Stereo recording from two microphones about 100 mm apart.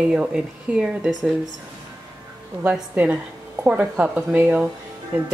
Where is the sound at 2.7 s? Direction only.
10° right (ahead or behind).